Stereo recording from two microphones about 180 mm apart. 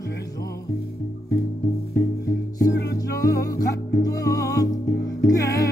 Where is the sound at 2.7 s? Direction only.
65° left (ahead or behind).